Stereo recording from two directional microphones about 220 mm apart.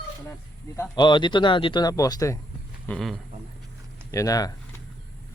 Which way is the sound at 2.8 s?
5° left (ahead or behind).